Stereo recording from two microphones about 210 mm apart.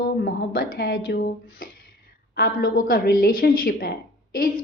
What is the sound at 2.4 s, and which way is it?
A woman's voice, 45° left (ahead or behind).